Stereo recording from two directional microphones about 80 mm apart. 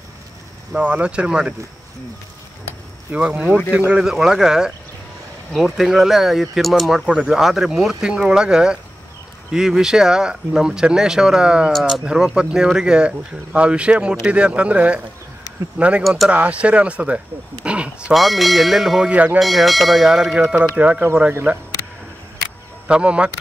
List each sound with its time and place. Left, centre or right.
0.7 s speech: centre
3.1 s speech: centre
16.0 s speech: centre
16.3 s speech: centre
18.1 s speech: centre
19.0 s speech: centre
19.4 s speech: centre; by 21.5 s right
22.8 s speech: centre